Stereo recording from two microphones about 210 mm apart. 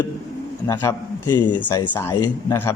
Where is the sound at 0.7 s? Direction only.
15° left (ahead or behind).